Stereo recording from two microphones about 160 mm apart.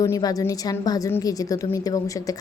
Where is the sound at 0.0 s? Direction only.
20° left (ahead or behind).